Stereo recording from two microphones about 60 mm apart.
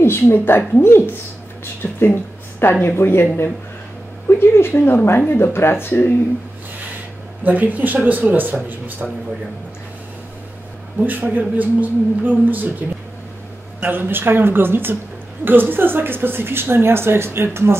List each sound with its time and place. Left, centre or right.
0.0 s a woman's voice: left
7.4 s a man's voice: right
11.0 s a woman's voice: right
13.7 s a woman's voice: right